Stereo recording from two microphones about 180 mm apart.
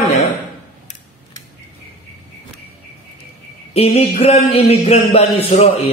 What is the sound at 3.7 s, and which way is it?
Speech, 30° left (ahead or behind).